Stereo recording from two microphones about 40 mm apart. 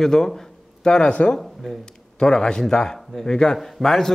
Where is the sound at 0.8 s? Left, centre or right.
Left.